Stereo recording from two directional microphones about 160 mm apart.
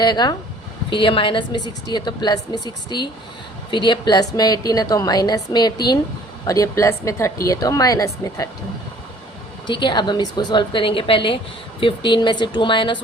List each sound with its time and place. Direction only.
0.0 s a woman's voice: 25° left (ahead or behind)
9.8 s a woman's voice: 30° left (ahead or behind)